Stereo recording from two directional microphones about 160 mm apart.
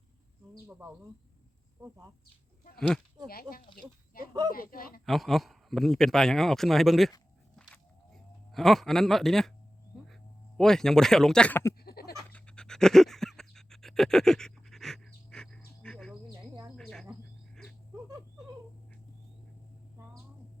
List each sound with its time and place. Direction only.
1.8 s speech: 15° right (ahead or behind)
2.7 s speech: 5° left (ahead or behind)
3.2 s speech: 70° left (ahead or behind)
5.0 s speech: centre (ahead or behind)
7.5 s a sound: 5° left (ahead or behind)
10.6 s speech: 5° left (ahead or behind)
11.8 s a sound: 75° left (ahead or behind)
12.3 s pant: 5° left (ahead or behind)
16.7 s cricket: 5° left (ahead or behind)
17.5 s dog: 5° left (ahead or behind)